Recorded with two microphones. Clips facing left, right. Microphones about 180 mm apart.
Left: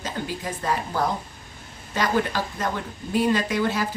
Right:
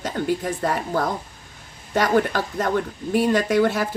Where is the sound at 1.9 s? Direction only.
50° right (ahead or behind).